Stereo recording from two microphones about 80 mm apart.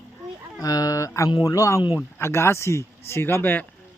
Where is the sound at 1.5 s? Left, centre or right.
Left.